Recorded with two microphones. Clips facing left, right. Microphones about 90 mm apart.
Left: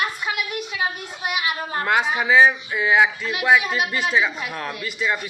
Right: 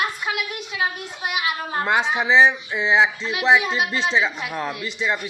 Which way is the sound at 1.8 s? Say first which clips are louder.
Even; 15° right (ahead or behind).